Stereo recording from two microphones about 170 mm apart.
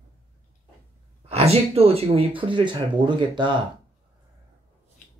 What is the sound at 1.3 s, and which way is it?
Speech, 35° right (ahead or behind).